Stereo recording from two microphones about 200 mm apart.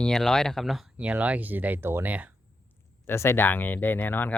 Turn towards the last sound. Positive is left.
turn(degrees=10)  # may be behind; listen again after turning